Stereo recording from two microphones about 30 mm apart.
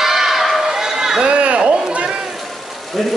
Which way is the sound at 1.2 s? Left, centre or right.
Right.